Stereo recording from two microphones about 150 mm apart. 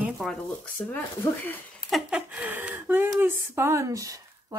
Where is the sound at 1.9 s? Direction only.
5° right (ahead or behind).